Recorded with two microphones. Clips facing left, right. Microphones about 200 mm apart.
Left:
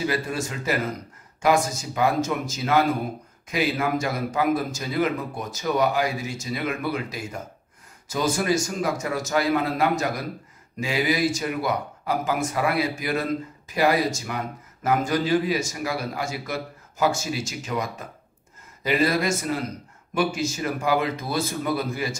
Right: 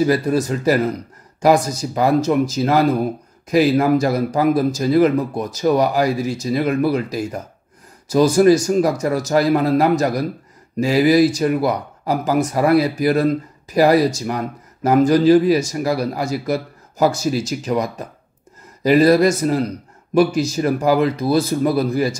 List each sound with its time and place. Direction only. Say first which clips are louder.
0.0 s speech: right 10 dB; 40° right (ahead or behind)